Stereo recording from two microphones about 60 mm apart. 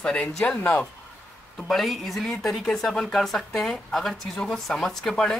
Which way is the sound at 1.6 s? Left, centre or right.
Centre.